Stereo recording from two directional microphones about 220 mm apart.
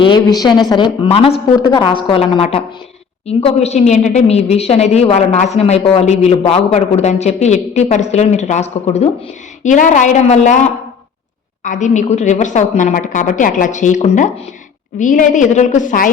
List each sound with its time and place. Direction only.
0.0 s a woman's voice: 20° left (ahead or behind); by 16.0 s 35° left (ahead or behind)